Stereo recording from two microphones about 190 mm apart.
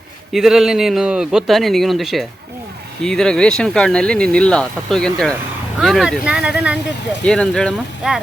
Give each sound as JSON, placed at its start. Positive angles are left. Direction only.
{"t": 0.3, "sound": "speech", "side_deg": 0}